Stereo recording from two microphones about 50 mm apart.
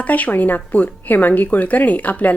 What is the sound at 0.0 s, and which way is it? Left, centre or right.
Speech, left.